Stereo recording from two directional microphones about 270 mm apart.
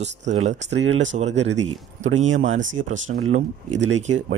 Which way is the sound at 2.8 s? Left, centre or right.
Right.